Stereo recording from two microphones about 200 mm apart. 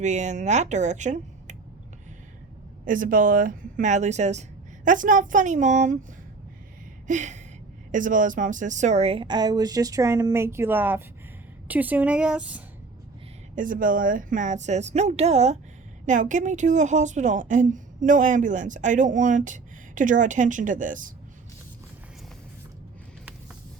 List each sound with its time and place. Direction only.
0.0 s a woman's voice: 35° right (ahead or behind)
2.8 s a woman's voice: 40° right (ahead or behind)
7.1 s a woman's voice: 35° right (ahead or behind); by 12.6 s 5° right (ahead or behind)
13.6 s a woman's voice: 45° right (ahead or behind)